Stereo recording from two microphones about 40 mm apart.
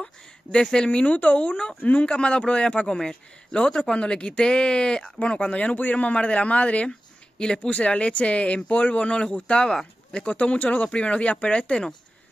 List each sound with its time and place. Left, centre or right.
0.0 s speech: left
0.8 s a man's voice: left
5.8 s a man's voice: left